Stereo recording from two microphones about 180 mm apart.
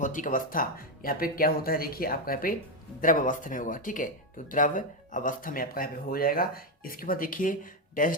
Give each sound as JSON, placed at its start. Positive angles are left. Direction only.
{"t": 0.0, "sound": "speech", "side_deg": 45}